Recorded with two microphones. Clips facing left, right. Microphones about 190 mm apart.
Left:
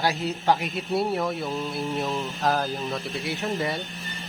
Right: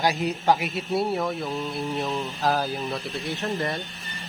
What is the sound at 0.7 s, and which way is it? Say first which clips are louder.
A man's voice: even; centre (ahead or behind).